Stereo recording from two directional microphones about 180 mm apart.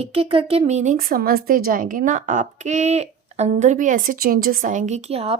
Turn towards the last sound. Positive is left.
turn(degrees=-35)  # may be behind; listen again after turning